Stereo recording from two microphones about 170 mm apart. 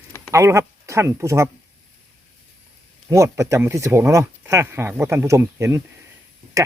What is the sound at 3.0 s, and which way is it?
Speech, 15° right (ahead or behind).